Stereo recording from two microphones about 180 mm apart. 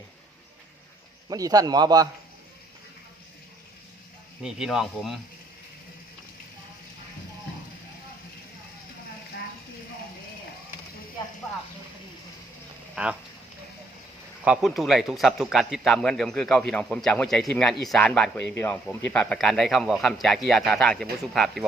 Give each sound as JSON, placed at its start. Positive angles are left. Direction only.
{"t": 1.3, "sound": "a man's voice", "side_deg": -20}
{"t": 4.4, "sound": "a man's voice", "side_deg": -5}
{"t": 13.0, "sound": "speech", "side_deg": -5}
{"t": 14.4, "sound": "a man's voice", "side_deg": -5}